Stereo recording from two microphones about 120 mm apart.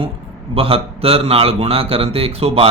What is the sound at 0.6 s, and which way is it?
A man's voice, 55° right (ahead or behind).